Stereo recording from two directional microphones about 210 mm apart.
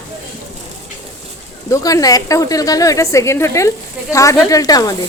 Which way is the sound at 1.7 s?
15° left (ahead or behind).